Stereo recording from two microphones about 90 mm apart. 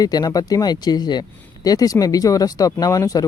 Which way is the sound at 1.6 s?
40° left (ahead or behind).